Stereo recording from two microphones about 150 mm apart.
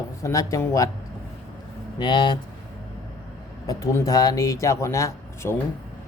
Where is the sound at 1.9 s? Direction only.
30° left (ahead or behind).